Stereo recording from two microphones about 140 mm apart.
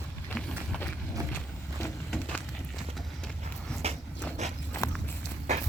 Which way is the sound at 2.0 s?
10° left (ahead or behind).